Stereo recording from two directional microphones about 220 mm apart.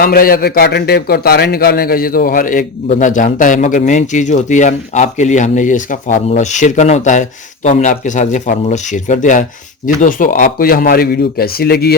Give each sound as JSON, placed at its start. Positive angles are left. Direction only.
{"t": 0.0, "sound": "a man's voice", "side_deg": 40}